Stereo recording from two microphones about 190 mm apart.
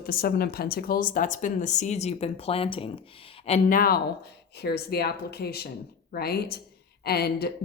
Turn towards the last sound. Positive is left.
turn(degrees=55)  # may be behind; listen again after turning